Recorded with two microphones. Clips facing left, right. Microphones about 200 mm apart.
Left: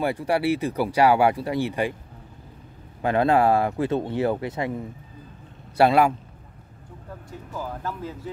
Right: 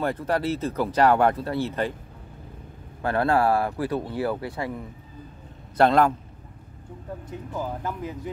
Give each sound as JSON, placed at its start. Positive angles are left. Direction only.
{"t": 0.0, "sound": "speech", "side_deg": 10}
{"t": 3.0, "sound": "speech", "side_deg": 20}
{"t": 5.8, "sound": "speech", "side_deg": 10}
{"t": 7.2, "sound": "speech", "side_deg": -20}